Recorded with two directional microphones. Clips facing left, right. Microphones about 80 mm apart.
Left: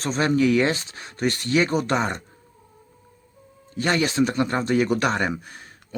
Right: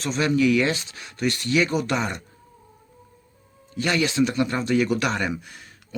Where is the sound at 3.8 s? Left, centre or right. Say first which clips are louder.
Left 1 dB; left.